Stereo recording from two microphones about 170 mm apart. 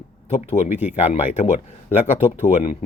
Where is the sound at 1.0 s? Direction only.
40° left (ahead or behind).